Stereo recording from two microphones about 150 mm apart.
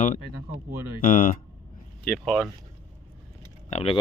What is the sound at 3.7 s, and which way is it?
Speech, 45° left (ahead or behind).